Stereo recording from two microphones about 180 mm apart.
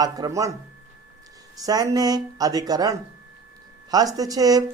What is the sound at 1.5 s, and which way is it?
Speech, 20° right (ahead or behind).